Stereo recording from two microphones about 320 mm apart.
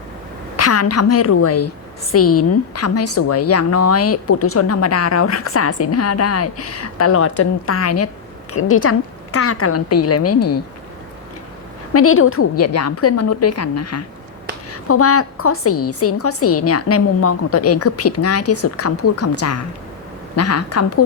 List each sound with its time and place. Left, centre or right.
0.5 s a woman's voice: left
11.9 s a woman's voice: left